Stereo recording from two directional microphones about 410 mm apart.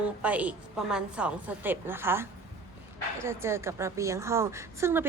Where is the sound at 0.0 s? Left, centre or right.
Centre.